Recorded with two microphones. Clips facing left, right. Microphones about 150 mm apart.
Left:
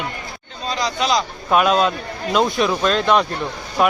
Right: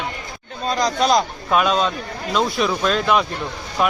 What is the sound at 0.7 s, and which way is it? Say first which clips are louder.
Speech: right 3 dB; 45° right (ahead or behind).